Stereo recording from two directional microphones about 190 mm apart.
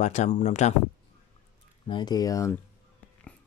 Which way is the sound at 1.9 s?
20° left (ahead or behind).